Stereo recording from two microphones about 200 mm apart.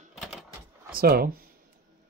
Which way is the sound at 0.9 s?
45° right (ahead or behind).